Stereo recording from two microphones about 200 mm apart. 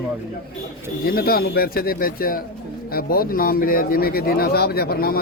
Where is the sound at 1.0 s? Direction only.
50° left (ahead or behind).